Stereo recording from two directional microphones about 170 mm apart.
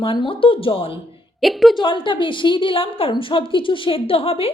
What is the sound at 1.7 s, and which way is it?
A woman's voice, 30° left (ahead or behind).